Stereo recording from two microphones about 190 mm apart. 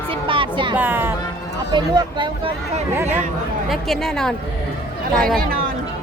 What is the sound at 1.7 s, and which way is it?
Speech, 25° right (ahead or behind).